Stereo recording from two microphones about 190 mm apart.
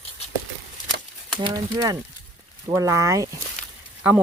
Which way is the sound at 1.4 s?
20° right (ahead or behind).